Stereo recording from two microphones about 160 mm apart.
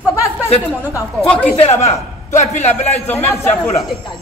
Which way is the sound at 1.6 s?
40° left (ahead or behind).